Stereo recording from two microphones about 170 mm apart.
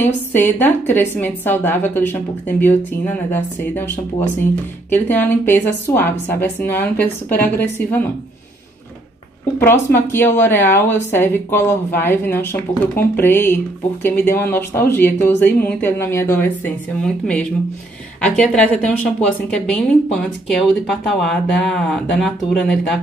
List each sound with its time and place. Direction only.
0.3 s speech: 10° left (ahead or behind)
9.6 s speech: 10° left (ahead or behind)